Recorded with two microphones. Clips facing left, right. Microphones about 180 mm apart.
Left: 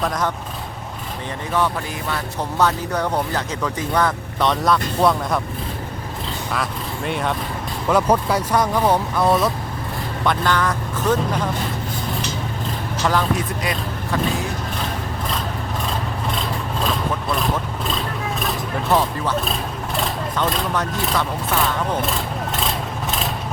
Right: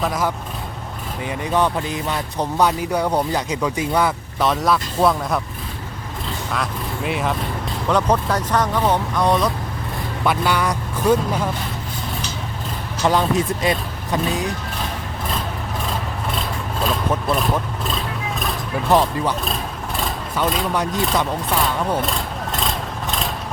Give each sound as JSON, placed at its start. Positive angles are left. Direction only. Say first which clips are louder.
{"t": 0.0, "sound": "speech", "louder": "right 1 dB", "side_deg": -5}
{"t": 1.5, "sound": "speech", "louder": "right 2 dB", "side_deg": -20}
{"t": 6.5, "sound": "speech", "louder": "even", "side_deg": 0}
{"t": 10.2, "sound": "speech", "louder": "even", "side_deg": -10}
{"t": 13.1, "sound": "speech", "louder": "right 3 dB", "side_deg": -25}
{"t": 18.9, "sound": "speech", "louder": "right 3 dB", "side_deg": -15}